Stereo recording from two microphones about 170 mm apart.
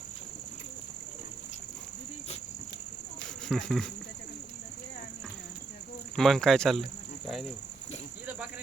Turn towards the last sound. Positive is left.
turn(degrees=0)  # may be behind; listen again after turning